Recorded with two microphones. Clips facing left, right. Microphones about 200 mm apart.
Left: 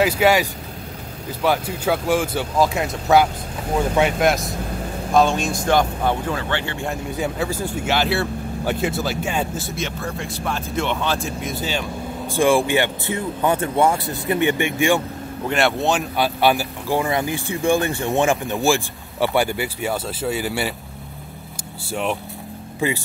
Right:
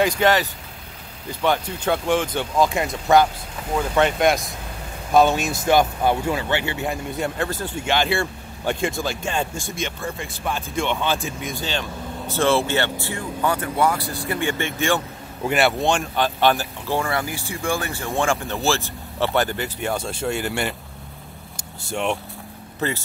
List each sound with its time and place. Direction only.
0.0 s speech: 10° left (ahead or behind); by 7.0 s 5° right (ahead or behind)
7.1 s speech: 10° left (ahead or behind)
15.4 s speech: 5° right (ahead or behind)
21.8 s speech: 5° left (ahead or behind)